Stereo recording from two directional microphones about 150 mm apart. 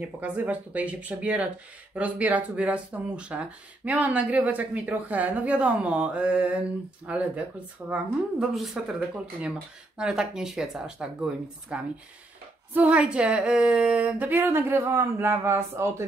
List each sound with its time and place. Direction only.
0.0 s speech: 10° right (ahead or behind)